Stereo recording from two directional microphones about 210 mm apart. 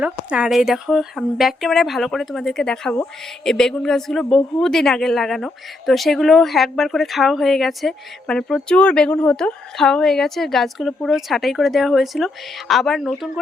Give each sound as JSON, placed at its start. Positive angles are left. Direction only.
{"t": 0.0, "sound": "speech", "side_deg": -5}